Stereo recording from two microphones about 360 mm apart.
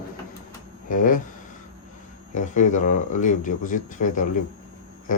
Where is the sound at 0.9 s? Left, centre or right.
Left.